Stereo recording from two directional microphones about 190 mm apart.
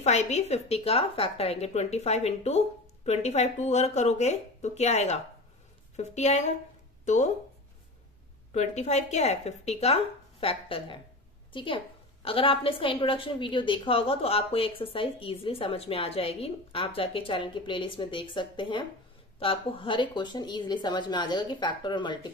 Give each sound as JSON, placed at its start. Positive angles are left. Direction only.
{"t": 0.0, "sound": "speech", "side_deg": 35}
{"t": 8.5, "sound": "a woman's voice", "side_deg": 35}